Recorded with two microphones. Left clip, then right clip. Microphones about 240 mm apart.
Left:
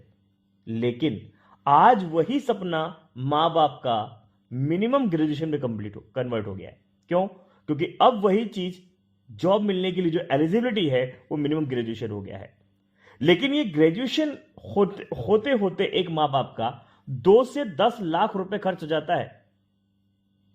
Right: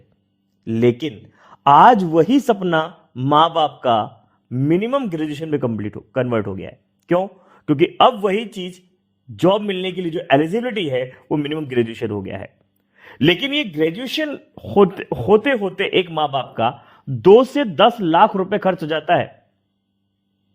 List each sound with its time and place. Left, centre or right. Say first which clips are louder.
0.6 s speech: right 8 dB; right